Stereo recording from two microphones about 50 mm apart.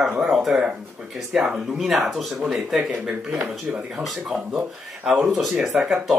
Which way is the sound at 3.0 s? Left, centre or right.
Centre.